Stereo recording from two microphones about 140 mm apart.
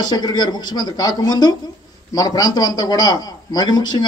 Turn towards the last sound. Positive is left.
turn(degrees=30)  # may be behind; listen again after turning